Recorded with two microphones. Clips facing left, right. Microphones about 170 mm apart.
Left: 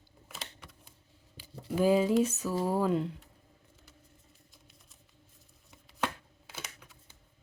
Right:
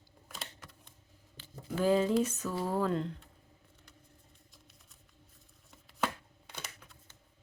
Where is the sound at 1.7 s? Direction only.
10° left (ahead or behind).